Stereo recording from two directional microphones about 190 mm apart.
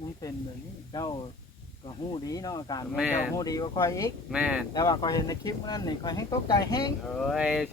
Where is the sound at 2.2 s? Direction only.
20° left (ahead or behind).